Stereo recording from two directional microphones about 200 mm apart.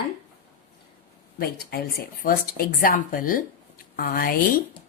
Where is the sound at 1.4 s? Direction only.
50° left (ahead or behind).